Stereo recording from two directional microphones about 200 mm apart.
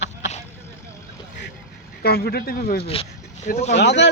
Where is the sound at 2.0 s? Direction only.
50° left (ahead or behind).